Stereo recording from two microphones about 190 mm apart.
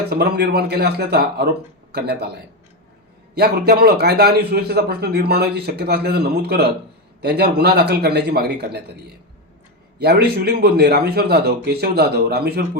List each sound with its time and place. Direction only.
0.1 s a man's voice: 60° right (ahead or behind)
3.3 s a man's voice: 55° right (ahead or behind)
10.0 s a man's voice: 60° right (ahead or behind)